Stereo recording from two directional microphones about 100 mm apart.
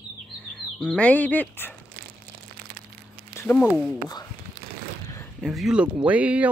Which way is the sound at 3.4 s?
20° left (ahead or behind).